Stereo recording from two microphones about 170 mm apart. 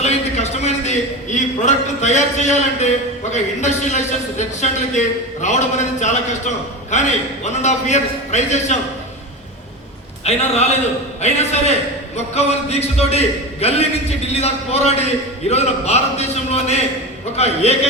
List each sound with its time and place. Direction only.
0.0 s a man's voice: 40° left (ahead or behind)
10.2 s a man's voice: 40° left (ahead or behind)